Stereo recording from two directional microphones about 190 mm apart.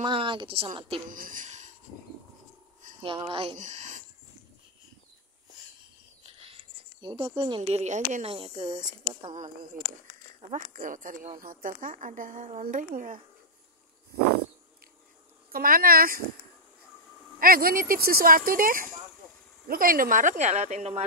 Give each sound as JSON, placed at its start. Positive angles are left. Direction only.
{"t": 0.0, "sound": "speech", "side_deg": -25}
{"t": 1.0, "sound": "speech", "side_deg": -45}
{"t": 3.0, "sound": "speech", "side_deg": -25}
{"t": 7.0, "sound": "speech", "side_deg": -25}
{"t": 10.5, "sound": "speech", "side_deg": -45}
{"t": 15.5, "sound": "speech", "side_deg": -50}
{"t": 17.4, "sound": "speech", "side_deg": -50}